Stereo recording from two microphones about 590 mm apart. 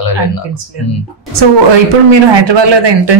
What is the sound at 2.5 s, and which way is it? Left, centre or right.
Speech, right.